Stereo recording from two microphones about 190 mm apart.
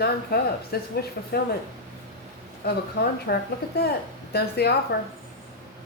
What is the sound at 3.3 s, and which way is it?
Speech, 55° left (ahead or behind).